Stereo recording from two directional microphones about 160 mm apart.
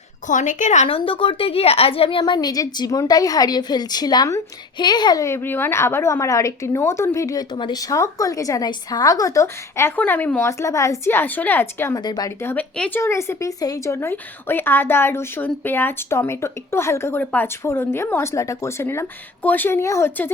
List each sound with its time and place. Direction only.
0.3 s a woman's voice: 50° left (ahead or behind); by 12.5 s 25° left (ahead or behind)
12.5 s speech: 10° left (ahead or behind)